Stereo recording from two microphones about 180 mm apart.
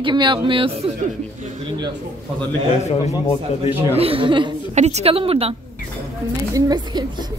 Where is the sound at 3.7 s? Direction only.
10° right (ahead or behind).